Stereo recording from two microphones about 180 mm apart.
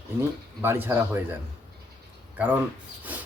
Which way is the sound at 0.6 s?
15° right (ahead or behind).